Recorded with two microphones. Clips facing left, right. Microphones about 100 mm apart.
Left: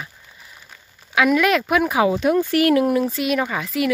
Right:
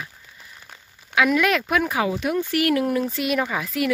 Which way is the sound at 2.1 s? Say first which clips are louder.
Left 5 dB; 35° left (ahead or behind).